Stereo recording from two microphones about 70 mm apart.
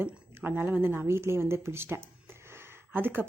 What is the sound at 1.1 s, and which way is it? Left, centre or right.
Speech, right.